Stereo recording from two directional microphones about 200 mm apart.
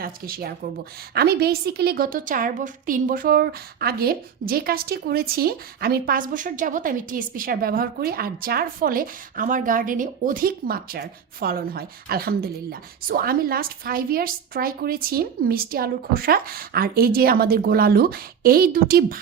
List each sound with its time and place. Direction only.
0.0 s a woman's voice: 50° right (ahead or behind)